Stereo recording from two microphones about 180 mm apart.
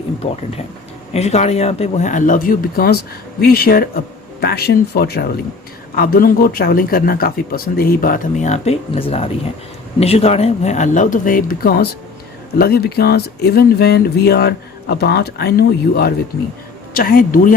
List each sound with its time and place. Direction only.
0.2 s speech: 35° left (ahead or behind); by 17.5 s 50° left (ahead or behind)